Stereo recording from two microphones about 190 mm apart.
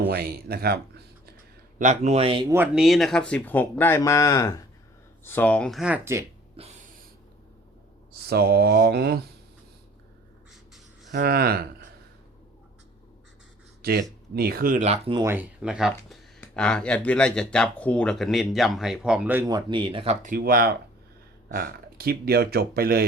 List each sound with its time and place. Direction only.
0.0 s speech: 55° right (ahead or behind)
1.8 s speech: 40° right (ahead or behind)
2.5 s speech: 5° right (ahead or behind)
6.6 s a sound: 30° right (ahead or behind)
8.3 s speech: 55° right (ahead or behind)
11.1 s speech: 55° right (ahead or behind)
13.8 s speech: 55° right (ahead or behind)
14.8 s speech: 30° right (ahead or behind)
15.2 s speech: 10° right (ahead or behind)
19.5 s speech: 25° right (ahead or behind)
20.2 s speech: 50° right (ahead or behind)